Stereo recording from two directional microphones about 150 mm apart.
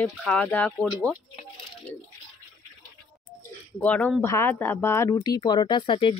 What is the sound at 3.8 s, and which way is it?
Speech, 10° left (ahead or behind).